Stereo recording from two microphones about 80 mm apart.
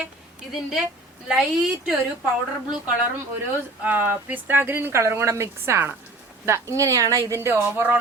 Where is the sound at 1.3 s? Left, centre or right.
Centre.